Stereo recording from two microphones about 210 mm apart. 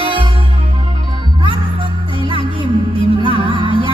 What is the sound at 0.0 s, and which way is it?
Music, 25° right (ahead or behind).